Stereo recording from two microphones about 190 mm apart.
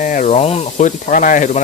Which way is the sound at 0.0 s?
45° left (ahead or behind).